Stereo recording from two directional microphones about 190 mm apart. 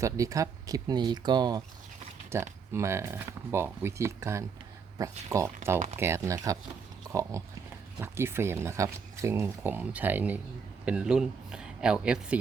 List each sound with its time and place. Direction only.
0.0 s speech: 15° right (ahead or behind)
2.7 s speech: 15° right (ahead or behind)